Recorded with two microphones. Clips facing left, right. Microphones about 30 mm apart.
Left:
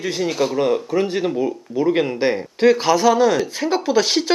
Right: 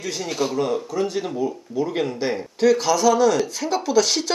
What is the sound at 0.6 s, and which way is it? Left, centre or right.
Speech, left.